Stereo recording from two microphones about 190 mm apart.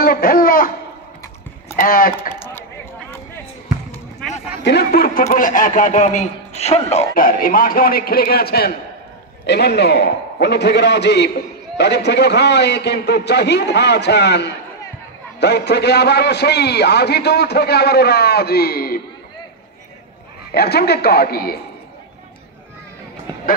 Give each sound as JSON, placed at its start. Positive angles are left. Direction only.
{"t": 0.0, "sound": "speech", "side_deg": 50}
{"t": 1.8, "sound": "speech", "side_deg": 50}
{"t": 4.6, "sound": "a man's voice", "side_deg": 60}
{"t": 7.2, "sound": "a man's voice", "side_deg": 50}
{"t": 20.5, "sound": "a man's voice", "side_deg": 55}